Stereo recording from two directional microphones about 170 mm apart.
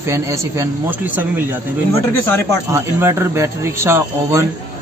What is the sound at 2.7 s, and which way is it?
Speech, 15° right (ahead or behind).